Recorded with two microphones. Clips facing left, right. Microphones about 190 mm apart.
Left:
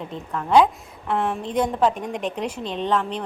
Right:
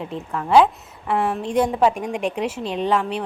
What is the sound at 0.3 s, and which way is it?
A woman's voice, 5° right (ahead or behind).